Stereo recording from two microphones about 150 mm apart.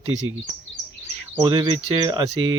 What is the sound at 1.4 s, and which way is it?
Speech, 25° right (ahead or behind).